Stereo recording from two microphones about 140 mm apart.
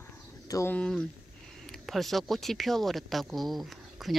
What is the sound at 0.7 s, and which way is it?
Speech, 5° left (ahead or behind).